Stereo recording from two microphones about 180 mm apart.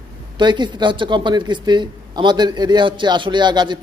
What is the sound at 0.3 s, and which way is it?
Speech, 25° right (ahead or behind).